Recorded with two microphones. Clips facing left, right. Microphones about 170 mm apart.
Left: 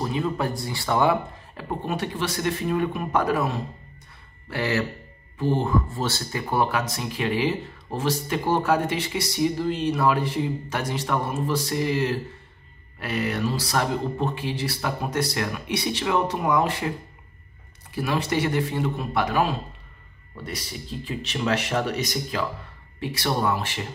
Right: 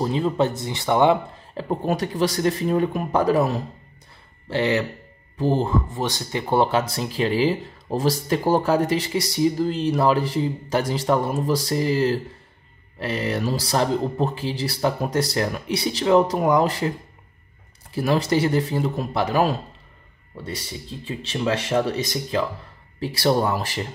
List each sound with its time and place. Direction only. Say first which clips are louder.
0.0 s speech: right 5 dB; 30° right (ahead or behind)
1.6 s speech: right 5 dB; 40° right (ahead or behind)
4.5 s speech: right 4 dB; 20° right (ahead or behind)
5.4 s speech: right 2 dB; 35° right (ahead or behind)
5.9 s speech: right 2 dB; 15° right (ahead or behind); by 16.9 s 35° right (ahead or behind)
17.9 s speech: right 4 dB; 35° right (ahead or behind)
20.3 s speech: right 2 dB; 25° right (ahead or behind)